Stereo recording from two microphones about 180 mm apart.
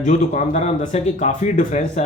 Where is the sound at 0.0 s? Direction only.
40° left (ahead or behind).